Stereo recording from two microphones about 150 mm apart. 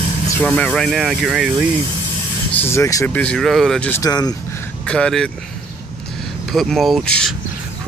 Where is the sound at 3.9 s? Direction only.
25° left (ahead or behind).